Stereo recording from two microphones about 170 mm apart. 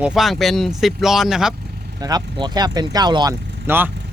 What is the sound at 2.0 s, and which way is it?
Speech, 25° right (ahead or behind).